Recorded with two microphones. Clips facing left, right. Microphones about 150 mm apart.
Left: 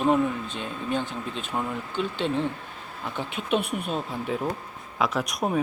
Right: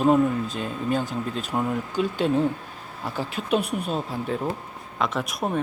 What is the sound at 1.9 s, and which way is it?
Speech, 40° right (ahead or behind).